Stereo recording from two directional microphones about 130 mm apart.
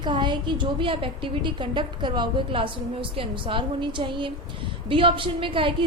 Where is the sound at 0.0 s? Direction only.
35° right (ahead or behind).